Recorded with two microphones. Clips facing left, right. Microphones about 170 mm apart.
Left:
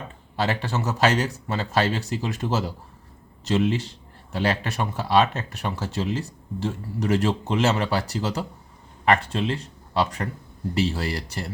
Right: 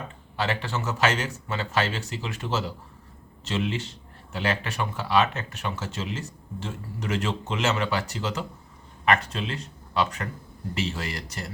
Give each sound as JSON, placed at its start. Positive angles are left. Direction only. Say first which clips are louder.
{"t": 0.3, "sound": "speech", "louder": "left 3 dB", "side_deg": 40}